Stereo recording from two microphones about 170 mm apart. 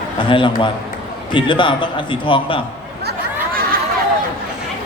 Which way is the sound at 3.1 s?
60° right (ahead or behind).